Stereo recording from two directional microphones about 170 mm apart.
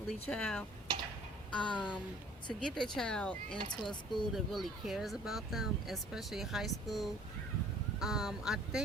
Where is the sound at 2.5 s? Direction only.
5° left (ahead or behind).